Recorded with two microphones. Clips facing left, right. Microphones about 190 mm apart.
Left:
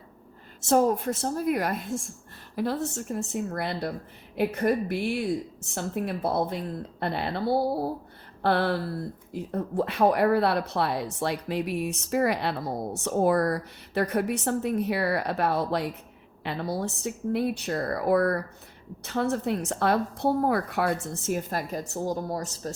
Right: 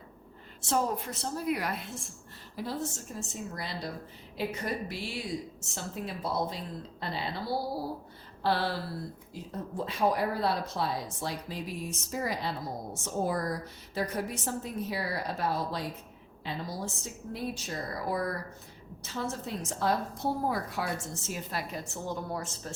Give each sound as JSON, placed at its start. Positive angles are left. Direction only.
{"t": 0.6, "sound": "a woman's voice", "side_deg": 45}
{"t": 2.6, "sound": "speech", "side_deg": 65}
{"t": 8.4, "sound": "a sound", "side_deg": 55}
{"t": 9.3, "sound": "speech", "side_deg": 60}